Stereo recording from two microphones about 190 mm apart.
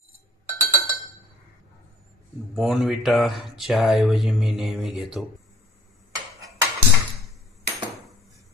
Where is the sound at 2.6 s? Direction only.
Centre (ahead or behind).